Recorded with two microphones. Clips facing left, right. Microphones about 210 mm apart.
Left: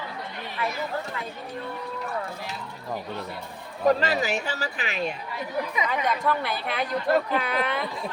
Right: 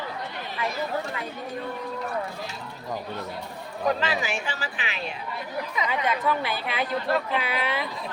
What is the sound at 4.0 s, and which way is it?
Speech, 40° left (ahead or behind).